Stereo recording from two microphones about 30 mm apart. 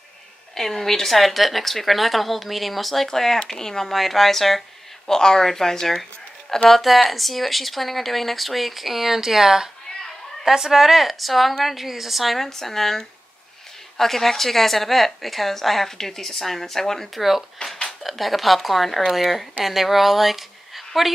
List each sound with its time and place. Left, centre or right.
0.6 s a woman's voice: centre
3.8 s speech: centre
5.1 s a woman's voice: centre
6.7 s a woman's voice: centre
12.4 s a woman's voice: centre
17.1 s a woman's voice: centre